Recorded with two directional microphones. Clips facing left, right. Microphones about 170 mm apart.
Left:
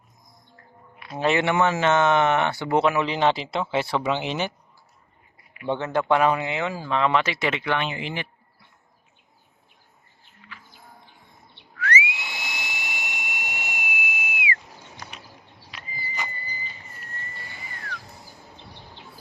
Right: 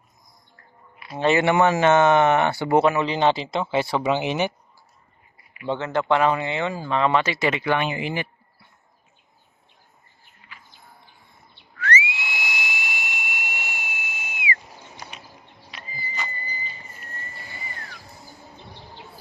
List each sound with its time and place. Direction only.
0.9 s speech: centre (ahead or behind)
1.5 s speech: 50° right (ahead or behind)
2.6 s speech: 5° right (ahead or behind)
5.6 s speech: 15° left (ahead or behind); by 8.3 s 10° right (ahead or behind)
11.8 s whistle: 15° left (ahead or behind)